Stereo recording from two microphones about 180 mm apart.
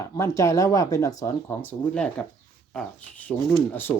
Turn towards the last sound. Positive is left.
turn(degrees=10)  # may be behind; listen again after turning